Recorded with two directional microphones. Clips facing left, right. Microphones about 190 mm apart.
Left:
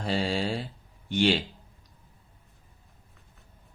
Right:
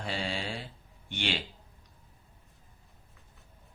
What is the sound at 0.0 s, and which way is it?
Mantra, 40° left (ahead or behind).